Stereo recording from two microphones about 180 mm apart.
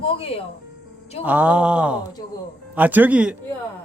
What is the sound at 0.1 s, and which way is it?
Speech, 30° left (ahead or behind).